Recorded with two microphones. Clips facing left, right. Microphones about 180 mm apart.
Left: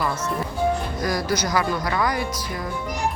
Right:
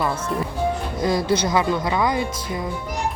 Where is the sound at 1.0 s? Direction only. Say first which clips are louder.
Right 5 dB; 25° right (ahead or behind).